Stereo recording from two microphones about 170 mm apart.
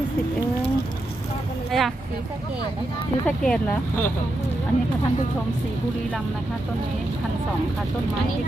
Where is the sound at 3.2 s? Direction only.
5° left (ahead or behind).